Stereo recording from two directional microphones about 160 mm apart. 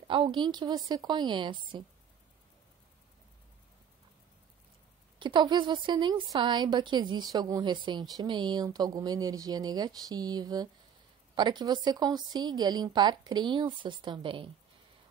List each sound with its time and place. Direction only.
0.1 s a woman's voice: 30° right (ahead or behind)
5.2 s a woman's voice: 30° right (ahead or behind)